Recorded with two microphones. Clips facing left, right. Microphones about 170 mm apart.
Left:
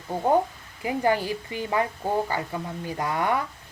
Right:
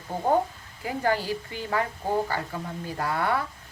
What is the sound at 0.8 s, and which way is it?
Speech, 15° left (ahead or behind).